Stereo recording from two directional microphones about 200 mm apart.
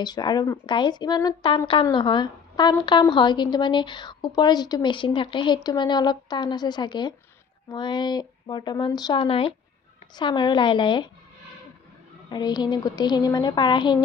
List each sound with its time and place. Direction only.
0.0 s speech: 20° left (ahead or behind)
12.3 s speech: 20° left (ahead or behind)